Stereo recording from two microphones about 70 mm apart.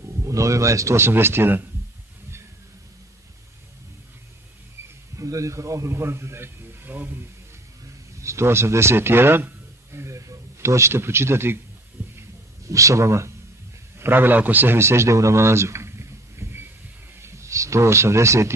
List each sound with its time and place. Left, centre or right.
0.2 s a man's voice: right
5.1 s a man's voice: right
8.2 s a man's voice: right
9.9 s a sound: right
12.2 s a sound: right
13.9 s a man's voice: right